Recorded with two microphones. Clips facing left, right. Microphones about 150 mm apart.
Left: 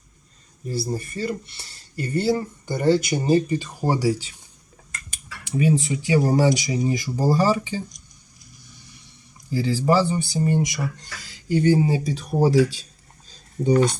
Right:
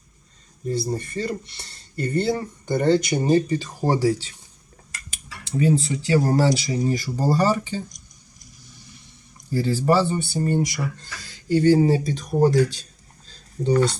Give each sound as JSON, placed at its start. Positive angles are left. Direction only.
{"t": 0.7, "sound": "speech", "side_deg": 5}
{"t": 5.5, "sound": "speech", "side_deg": 15}
{"t": 9.5, "sound": "speech", "side_deg": 10}
{"t": 13.2, "sound": "a sound", "side_deg": 10}